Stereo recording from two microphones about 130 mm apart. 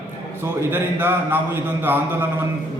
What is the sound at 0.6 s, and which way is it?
A man's voice, 15° right (ahead or behind).